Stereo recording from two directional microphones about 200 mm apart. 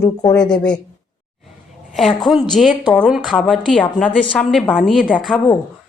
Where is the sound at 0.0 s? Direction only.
20° left (ahead or behind).